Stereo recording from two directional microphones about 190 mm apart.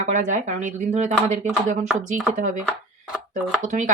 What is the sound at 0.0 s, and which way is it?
Speech, 40° right (ahead or behind).